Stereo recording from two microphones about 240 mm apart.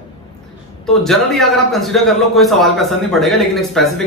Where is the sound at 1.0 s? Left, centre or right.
Centre.